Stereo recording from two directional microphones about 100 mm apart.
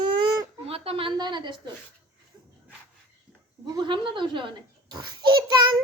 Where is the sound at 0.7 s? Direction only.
75° right (ahead or behind).